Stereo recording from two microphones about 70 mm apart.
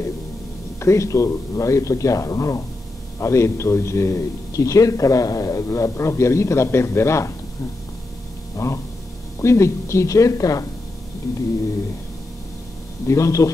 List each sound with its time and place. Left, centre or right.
0.7 s a man's voice: left
8.6 s a man's voice: left
13.0 s a man's voice: left